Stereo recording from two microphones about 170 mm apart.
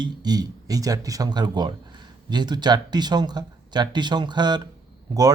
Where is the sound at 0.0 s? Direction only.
25° right (ahead or behind).